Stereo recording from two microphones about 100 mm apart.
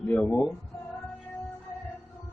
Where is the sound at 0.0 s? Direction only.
15° left (ahead or behind).